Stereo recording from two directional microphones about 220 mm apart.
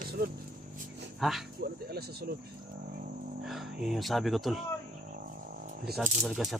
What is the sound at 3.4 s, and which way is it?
Speech, centre (ahead or behind).